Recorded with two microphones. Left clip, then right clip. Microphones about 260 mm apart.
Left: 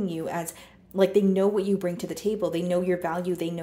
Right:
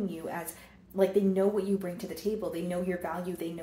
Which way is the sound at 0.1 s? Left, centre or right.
Left.